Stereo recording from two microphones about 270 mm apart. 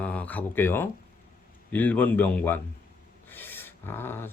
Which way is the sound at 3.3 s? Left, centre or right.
Centre.